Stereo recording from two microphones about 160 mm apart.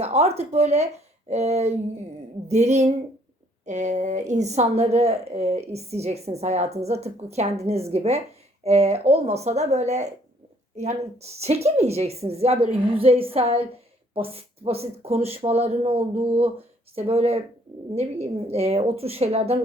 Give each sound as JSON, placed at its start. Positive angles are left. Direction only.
{"t": 0.0, "sound": "a woman's voice", "side_deg": -40}